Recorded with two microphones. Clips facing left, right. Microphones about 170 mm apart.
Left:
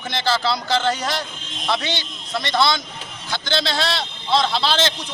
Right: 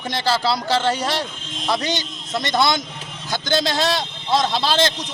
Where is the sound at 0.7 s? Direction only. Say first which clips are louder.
Even; 10° right (ahead or behind).